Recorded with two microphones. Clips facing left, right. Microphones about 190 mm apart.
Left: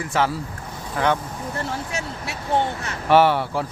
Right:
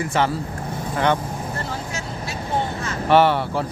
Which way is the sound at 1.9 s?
70° left (ahead or behind).